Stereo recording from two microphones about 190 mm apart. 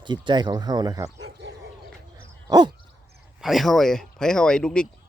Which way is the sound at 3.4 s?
Centre (ahead or behind).